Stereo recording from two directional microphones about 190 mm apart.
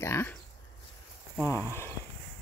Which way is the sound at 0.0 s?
10° left (ahead or behind).